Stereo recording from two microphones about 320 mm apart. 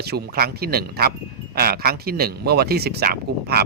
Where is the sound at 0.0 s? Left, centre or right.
Right.